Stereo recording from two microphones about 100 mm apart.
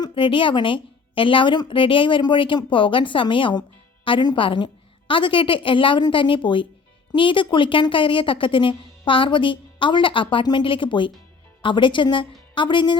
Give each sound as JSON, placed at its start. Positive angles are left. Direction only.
{"t": 0.1, "sound": "a woman's voice", "side_deg": 60}